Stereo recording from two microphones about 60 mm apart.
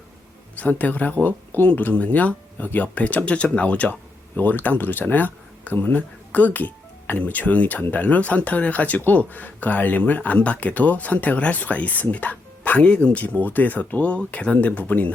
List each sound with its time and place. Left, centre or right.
0.5 s speech: left